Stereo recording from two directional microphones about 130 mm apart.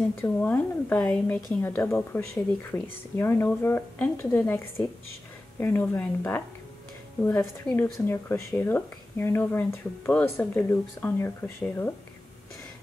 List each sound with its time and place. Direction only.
0.2 s speech: 15° left (ahead or behind)